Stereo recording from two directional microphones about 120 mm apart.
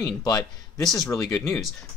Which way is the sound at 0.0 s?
30° left (ahead or behind).